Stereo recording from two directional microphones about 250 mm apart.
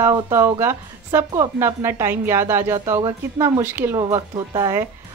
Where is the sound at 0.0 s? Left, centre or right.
Centre.